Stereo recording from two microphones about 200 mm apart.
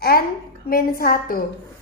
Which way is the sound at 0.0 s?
50° left (ahead or behind).